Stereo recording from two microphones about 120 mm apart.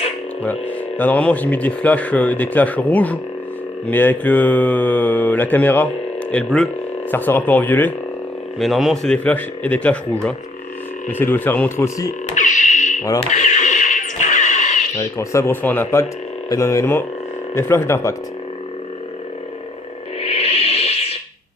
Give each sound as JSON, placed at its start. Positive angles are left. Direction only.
{"t": 0.9, "sound": "a man's voice", "side_deg": 15}
{"t": 7.1, "sound": "speech", "side_deg": 15}
{"t": 8.5, "sound": "a man's voice", "side_deg": 0}
{"t": 9.1, "sound": "speech", "side_deg": 15}
{"t": 12.3, "sound": "music", "side_deg": 90}
{"t": 13.3, "sound": "neigh", "side_deg": 90}
{"t": 14.9, "sound": "speech", "side_deg": 25}
{"t": 20.2, "sound": "music", "side_deg": 55}